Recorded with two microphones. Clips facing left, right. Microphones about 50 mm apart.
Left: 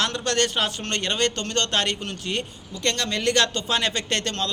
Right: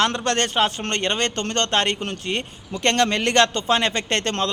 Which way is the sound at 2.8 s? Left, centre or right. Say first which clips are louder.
Right 6 dB; right.